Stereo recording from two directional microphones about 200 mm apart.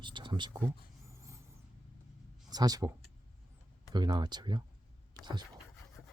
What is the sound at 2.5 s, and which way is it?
Speech, 20° right (ahead or behind).